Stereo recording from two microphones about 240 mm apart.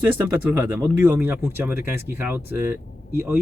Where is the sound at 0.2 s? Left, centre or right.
Centre.